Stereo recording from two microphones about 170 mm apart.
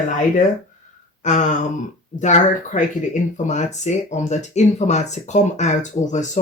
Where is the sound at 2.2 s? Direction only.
45° left (ahead or behind).